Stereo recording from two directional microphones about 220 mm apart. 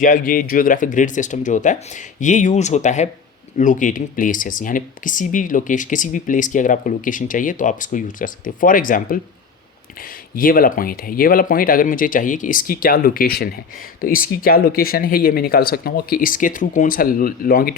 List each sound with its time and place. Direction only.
0.0 s speech: 40° left (ahead or behind)
10.3 s speech: 40° left (ahead or behind)